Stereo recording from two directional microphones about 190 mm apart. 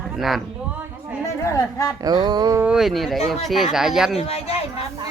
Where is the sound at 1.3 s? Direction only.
15° left (ahead or behind).